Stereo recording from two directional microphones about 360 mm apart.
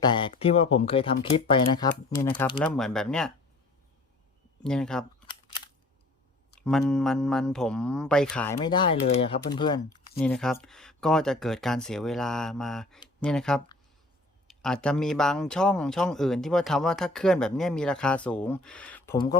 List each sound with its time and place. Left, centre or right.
0.0 s speech: centre
2.6 s speech: centre
4.6 s speech: centre
6.6 s speech: centre
8.5 s speech: centre